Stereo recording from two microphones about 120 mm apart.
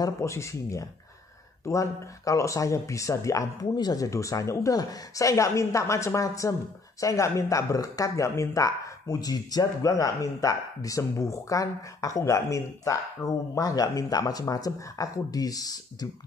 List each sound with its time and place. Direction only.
0.0 s speech: 25° left (ahead or behind)